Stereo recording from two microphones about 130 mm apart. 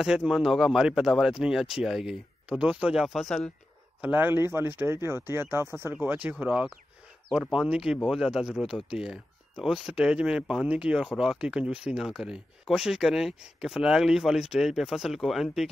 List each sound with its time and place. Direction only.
0.0 s speech: 5° right (ahead or behind)
4.0 s speech: 15° right (ahead or behind)